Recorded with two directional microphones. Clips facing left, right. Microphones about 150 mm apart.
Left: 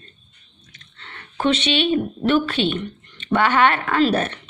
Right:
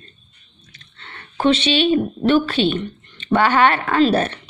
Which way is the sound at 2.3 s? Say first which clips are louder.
Right 3 dB; 35° right (ahead or behind).